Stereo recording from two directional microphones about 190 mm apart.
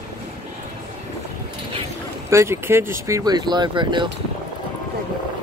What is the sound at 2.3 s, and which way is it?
Speech, 15° right (ahead or behind).